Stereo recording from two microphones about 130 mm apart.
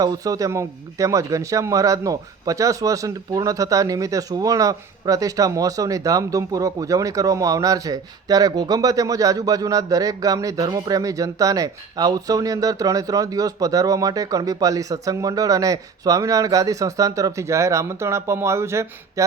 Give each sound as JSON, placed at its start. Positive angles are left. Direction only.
{"t": 0.0, "sound": "a man's voice", "side_deg": -30}